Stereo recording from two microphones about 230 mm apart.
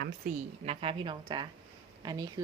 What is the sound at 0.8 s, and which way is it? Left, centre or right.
A woman's voice, right.